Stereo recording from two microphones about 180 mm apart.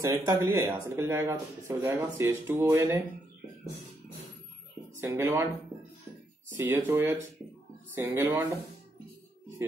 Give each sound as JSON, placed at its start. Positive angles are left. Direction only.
{"t": 0.0, "sound": "speech", "side_deg": -15}
{"t": 5.0, "sound": "speech", "side_deg": -15}
{"t": 6.5, "sound": "speech", "side_deg": -15}